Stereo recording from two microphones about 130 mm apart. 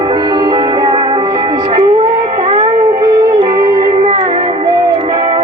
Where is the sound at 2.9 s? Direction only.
30° right (ahead or behind).